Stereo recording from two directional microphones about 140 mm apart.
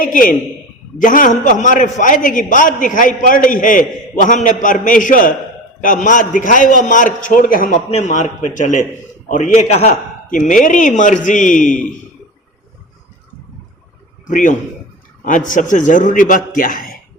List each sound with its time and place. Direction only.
0.0 s a man's voice: 80° left
0.9 s a man's voice: 70° left (ahead or behind)
7.9 s a man's voice: 50° left (ahead or behind)
10.3 s a man's voice: 70° left (ahead or behind)
14.3 s a man's voice: 65° left (ahead or behind); by 16.9 s 85° left